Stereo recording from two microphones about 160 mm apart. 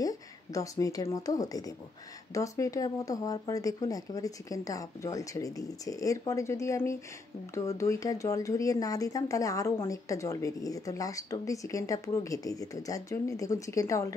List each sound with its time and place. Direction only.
0.0 s speech: 20° left (ahead or behind)